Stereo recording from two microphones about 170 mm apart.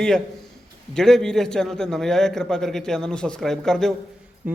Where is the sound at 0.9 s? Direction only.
5° left (ahead or behind).